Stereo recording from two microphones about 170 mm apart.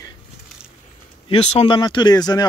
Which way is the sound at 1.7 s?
25° left (ahead or behind).